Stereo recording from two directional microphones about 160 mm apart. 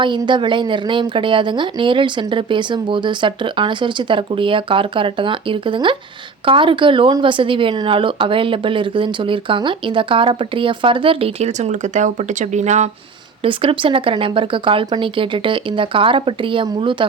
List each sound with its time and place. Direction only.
0.0 s a woman's voice: 30° right (ahead or behind); by 12.9 s 45° right (ahead or behind)
13.4 s a woman's voice: 35° right (ahead or behind)